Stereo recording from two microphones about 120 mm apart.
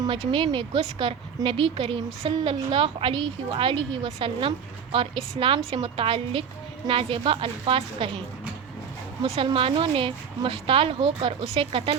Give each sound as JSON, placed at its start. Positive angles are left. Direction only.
{"t": 0.3, "sound": "a woman's voice", "side_deg": -45}
{"t": 9.2, "sound": "a woman's voice", "side_deg": -55}